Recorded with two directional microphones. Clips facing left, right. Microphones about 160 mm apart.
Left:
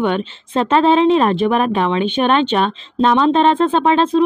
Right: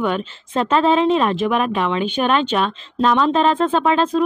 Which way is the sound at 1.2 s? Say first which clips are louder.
Left 3 dB; 40° left (ahead or behind).